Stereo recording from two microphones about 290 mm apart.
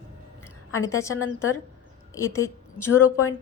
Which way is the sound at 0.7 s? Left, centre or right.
Centre.